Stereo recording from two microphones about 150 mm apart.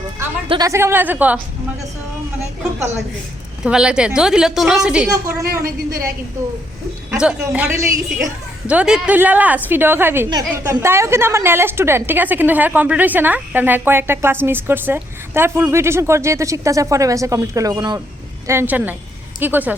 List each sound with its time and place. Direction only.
0.4 s speech: 35° right (ahead or behind)
0.7 s a woman's voice: 15° right (ahead or behind)
3.6 s a woman's voice: 5° right (ahead or behind)
5.1 s a woman's voice: 20° right (ahead or behind)
5.5 s a woman's voice: 80° right
7.2 s a woman's voice: 10° right (ahead or behind)
10.2 s a woman's voice: 25° right (ahead or behind)
18.4 s a woman's voice: 15° right (ahead or behind)